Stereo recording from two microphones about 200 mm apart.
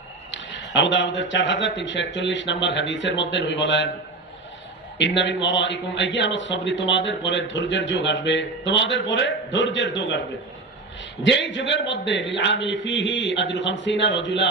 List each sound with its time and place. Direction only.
0.3 s speech: 65° left (ahead or behind)
4.9 s speech: 65° left (ahead or behind)
11.2 s speech: 65° left (ahead or behind)